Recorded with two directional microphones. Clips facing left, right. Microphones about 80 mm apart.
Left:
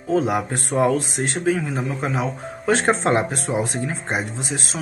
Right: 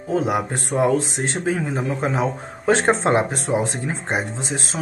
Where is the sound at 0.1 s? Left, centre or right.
Centre.